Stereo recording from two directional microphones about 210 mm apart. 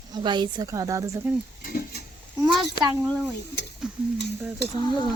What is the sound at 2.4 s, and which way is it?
A child's voice, centre (ahead or behind).